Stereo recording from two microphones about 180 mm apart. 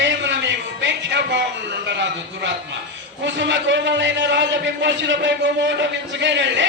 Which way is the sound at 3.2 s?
90° right.